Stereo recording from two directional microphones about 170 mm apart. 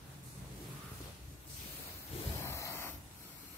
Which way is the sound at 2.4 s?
15° left (ahead or behind).